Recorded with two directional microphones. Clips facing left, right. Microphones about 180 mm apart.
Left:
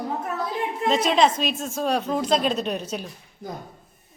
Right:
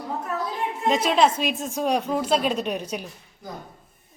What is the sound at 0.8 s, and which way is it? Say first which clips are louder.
Speech: even; 10° right (ahead or behind).